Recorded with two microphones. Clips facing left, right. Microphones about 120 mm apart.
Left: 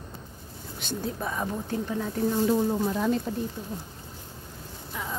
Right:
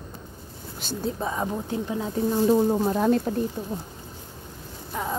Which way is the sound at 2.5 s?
30° right (ahead or behind).